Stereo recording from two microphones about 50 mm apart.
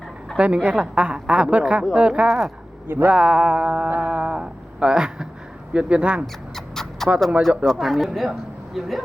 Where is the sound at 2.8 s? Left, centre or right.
Right.